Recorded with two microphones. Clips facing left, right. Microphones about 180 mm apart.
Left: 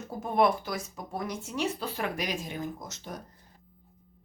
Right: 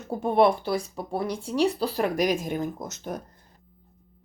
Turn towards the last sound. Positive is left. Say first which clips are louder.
# right 6 dB
turn(degrees=-50)  # may be behind; listen again after turning